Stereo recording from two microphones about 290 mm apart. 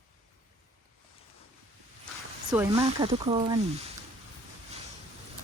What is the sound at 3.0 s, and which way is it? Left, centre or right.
Speech, centre.